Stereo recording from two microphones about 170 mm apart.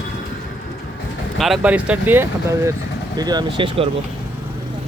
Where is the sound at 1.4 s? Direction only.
5° right (ahead or behind).